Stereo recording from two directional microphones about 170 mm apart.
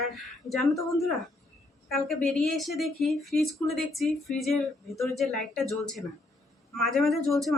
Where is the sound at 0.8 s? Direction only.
20° left (ahead or behind).